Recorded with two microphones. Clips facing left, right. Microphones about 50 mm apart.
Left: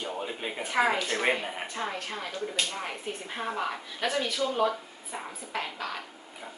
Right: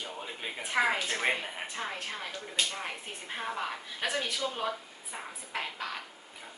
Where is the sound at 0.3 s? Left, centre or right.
Centre.